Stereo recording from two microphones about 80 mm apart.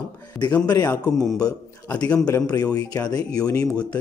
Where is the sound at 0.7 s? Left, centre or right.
Left.